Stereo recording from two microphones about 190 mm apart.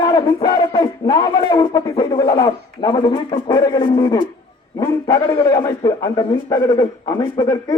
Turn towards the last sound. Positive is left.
turn(degrees=25)  # may be behind; listen again after turning